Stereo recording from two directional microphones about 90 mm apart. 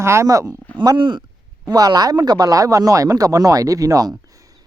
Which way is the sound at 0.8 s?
60° right (ahead or behind).